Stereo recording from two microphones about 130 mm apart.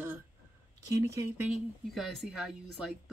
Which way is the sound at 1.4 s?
Centre (ahead or behind).